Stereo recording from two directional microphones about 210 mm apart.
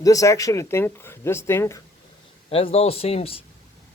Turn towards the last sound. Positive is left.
turn(degrees=30)  # may be behind; listen again after turning